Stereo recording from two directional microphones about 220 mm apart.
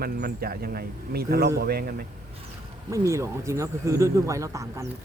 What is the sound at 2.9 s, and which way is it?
Speech, 15° right (ahead or behind).